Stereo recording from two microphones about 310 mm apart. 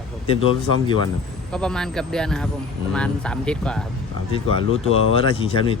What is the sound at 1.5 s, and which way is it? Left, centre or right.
Speech, centre.